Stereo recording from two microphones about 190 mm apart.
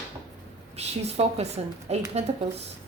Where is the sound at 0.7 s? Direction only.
35° right (ahead or behind).